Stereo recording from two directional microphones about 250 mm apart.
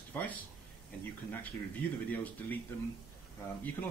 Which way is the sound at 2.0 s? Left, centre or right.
Centre.